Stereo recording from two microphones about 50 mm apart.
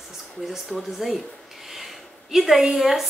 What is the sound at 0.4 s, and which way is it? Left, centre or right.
Speech, centre.